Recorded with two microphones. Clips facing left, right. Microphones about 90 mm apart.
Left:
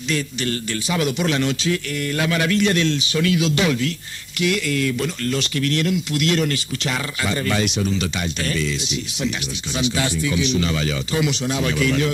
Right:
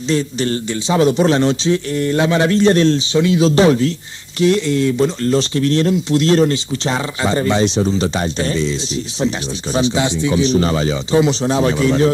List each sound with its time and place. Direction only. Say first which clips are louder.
0.1 s speech: right 6 dB; 30° right (ahead or behind)
9.8 s speech: right 6 dB; 25° right (ahead or behind)